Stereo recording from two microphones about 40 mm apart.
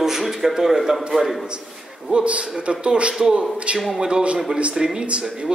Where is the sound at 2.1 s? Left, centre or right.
Right.